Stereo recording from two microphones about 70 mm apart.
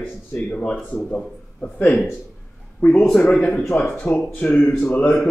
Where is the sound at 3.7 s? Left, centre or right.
Left.